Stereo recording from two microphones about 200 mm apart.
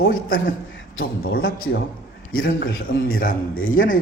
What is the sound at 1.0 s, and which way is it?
A man's voice, 50° left (ahead or behind).